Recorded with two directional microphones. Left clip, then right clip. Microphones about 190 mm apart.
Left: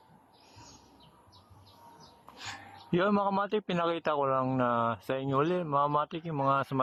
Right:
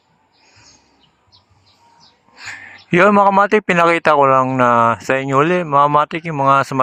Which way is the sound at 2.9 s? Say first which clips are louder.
Right 18 dB; 25° right (ahead or behind).